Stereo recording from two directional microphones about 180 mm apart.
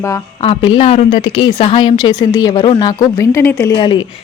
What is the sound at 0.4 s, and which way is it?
A woman's voice, 30° left (ahead or behind).